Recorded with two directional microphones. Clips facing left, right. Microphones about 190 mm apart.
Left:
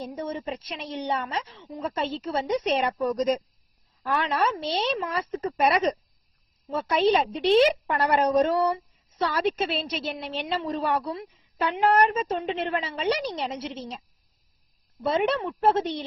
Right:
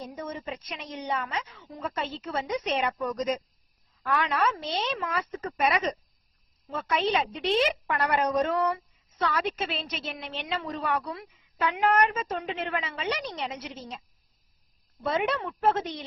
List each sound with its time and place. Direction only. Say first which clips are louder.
0.0 s a woman's voice: left 4 dB; 30° left (ahead or behind)
15.0 s a woman's voice: left 4 dB; 30° left (ahead or behind)